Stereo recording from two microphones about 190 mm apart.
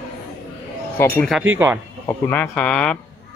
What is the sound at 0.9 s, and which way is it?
A man's voice, 10° left (ahead or behind).